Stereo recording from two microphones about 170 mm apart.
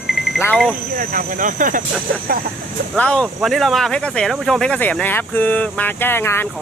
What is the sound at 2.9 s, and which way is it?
Speech, 5° left (ahead or behind).